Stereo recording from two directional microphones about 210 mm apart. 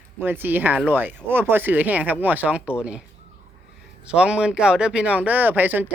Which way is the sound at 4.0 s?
5° right (ahead or behind).